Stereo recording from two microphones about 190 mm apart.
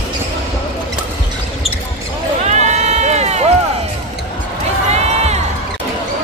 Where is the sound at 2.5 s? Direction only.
35° right (ahead or behind).